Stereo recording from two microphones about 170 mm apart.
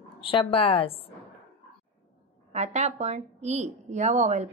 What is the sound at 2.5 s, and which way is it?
A woman's voice, 40° right (ahead or behind).